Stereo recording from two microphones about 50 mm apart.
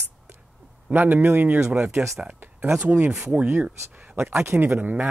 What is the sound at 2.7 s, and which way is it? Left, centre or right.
Speech, right.